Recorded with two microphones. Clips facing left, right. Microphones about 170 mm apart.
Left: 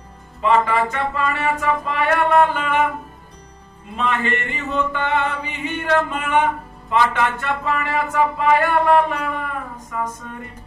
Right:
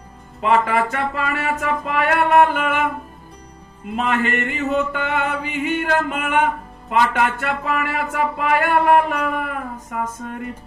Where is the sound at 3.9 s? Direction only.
50° right (ahead or behind).